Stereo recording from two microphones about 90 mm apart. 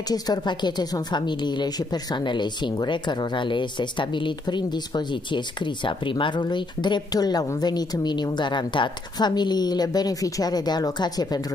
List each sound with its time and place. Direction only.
0.1 s a woman's voice: 50° left (ahead or behind)
5.9 s a woman's voice: 65° left (ahead or behind); by 11.4 s 45° left (ahead or behind)